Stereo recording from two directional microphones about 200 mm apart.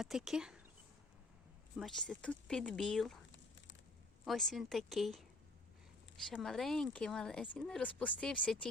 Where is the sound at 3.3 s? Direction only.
65° left (ahead or behind).